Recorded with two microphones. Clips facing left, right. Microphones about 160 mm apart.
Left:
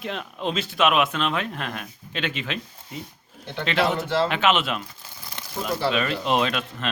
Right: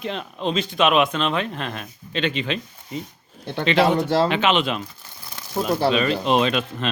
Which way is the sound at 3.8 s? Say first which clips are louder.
Right 4 dB; 40° right (ahead or behind).